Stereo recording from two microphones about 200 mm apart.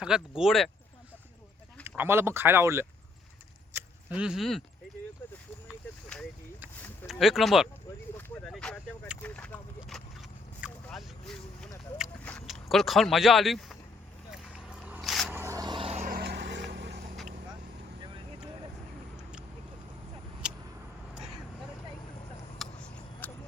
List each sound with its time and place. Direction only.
0.0 s speech: 5° right (ahead or behind)
1.8 s speech: 10° right (ahead or behind)
5.6 s vehicle: 5° left (ahead or behind)
7.1 s speech: centre (ahead or behind)
8.1 s a sound: 5° left (ahead or behind)
12.2 s speech: 5° left (ahead or behind)
14.3 s a sound: 5° right (ahead or behind)
15.4 s vehicle: 15° right (ahead or behind)
16.0 s vehicle: 50° right (ahead or behind)
22.5 s vehicle: 5° left (ahead or behind)